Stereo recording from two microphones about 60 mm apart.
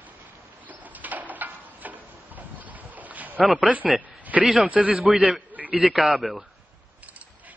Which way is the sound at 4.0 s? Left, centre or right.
Right.